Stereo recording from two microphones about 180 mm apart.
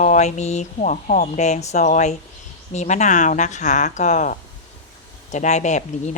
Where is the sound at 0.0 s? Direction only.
40° left (ahead or behind).